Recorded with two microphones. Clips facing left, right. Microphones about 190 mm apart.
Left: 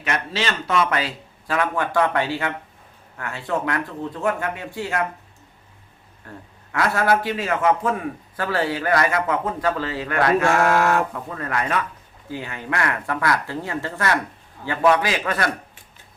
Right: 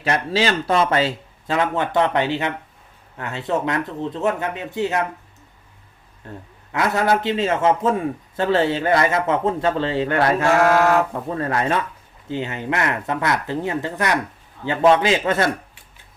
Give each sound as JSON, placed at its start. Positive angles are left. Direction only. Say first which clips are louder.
{"t": 0.0, "sound": "a man's voice", "louder": "right 5 dB", "side_deg": -35}
{"t": 6.3, "sound": "a man's voice", "louder": "right 3 dB", "side_deg": -25}